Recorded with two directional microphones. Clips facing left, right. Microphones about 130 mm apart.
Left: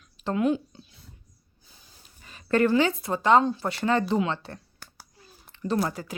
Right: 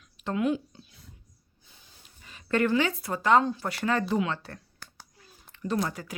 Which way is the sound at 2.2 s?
40° left (ahead or behind).